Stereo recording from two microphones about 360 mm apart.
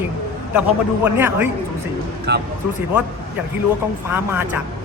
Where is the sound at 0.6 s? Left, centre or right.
Centre.